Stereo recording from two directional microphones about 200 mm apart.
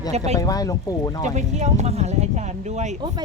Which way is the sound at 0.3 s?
20° left (ahead or behind).